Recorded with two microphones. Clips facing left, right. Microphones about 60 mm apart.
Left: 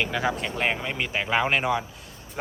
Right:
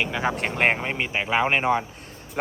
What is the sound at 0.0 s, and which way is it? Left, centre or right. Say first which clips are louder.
Speech: even; centre.